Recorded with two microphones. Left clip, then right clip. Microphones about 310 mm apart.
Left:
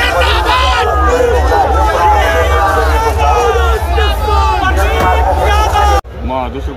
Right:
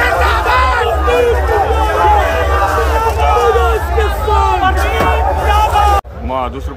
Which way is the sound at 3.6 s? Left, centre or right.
Right.